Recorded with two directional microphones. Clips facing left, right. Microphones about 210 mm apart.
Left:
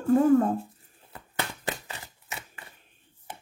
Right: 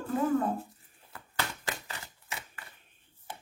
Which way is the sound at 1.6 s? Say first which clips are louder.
Left 4 dB; 20° left (ahead or behind).